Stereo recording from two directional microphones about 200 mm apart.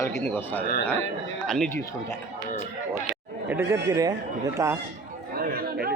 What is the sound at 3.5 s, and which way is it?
Speech, 10° right (ahead or behind).